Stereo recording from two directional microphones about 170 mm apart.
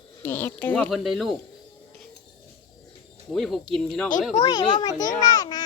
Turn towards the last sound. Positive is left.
turn(degrees=25)  # may be behind; listen again after turning